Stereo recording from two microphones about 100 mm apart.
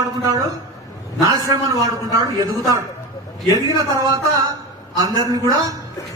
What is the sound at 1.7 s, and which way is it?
A man's voice, 35° right (ahead or behind).